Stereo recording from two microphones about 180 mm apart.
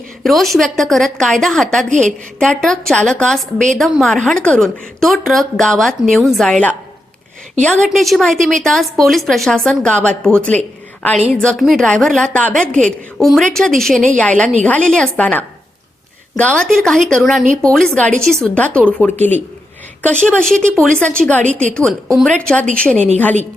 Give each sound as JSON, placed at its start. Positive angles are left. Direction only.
{"t": 0.2, "sound": "a woman's voice", "side_deg": 0}
{"t": 1.9, "sound": "a woman's voice", "side_deg": -45}
{"t": 2.4, "sound": "a woman's voice", "side_deg": 5}